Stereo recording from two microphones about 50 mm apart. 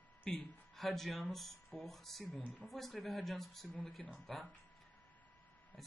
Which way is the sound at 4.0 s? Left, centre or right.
Centre.